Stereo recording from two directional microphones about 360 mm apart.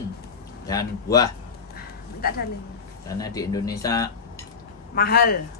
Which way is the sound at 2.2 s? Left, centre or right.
Left.